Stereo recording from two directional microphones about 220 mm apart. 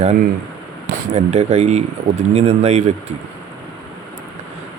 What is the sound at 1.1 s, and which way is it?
Speech, 30° right (ahead or behind).